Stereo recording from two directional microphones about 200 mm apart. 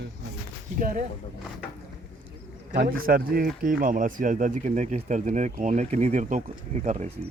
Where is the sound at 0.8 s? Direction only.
45° right (ahead or behind).